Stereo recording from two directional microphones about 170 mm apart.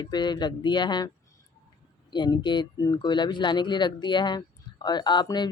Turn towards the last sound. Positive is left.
turn(degrees=25)  # may be behind; listen again after turning